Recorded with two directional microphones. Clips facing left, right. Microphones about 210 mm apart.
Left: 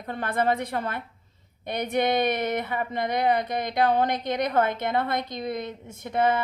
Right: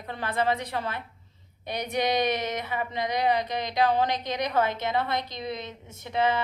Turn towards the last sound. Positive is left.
turn(degrees=50)  # may be behind; listen again after turning